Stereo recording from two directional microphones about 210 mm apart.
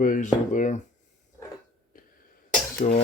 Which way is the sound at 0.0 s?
40° left (ahead or behind).